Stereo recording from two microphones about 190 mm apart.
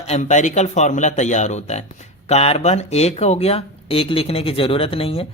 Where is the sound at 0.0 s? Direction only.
35° left (ahead or behind).